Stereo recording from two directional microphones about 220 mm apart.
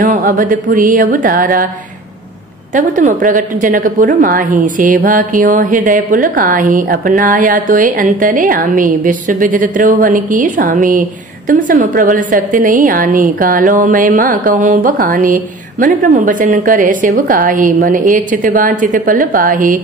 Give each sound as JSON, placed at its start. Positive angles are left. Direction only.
{"t": 0.0, "sound": "a woman's voice", "side_deg": -40}
{"t": 2.7, "sound": "a woman's voice", "side_deg": -35}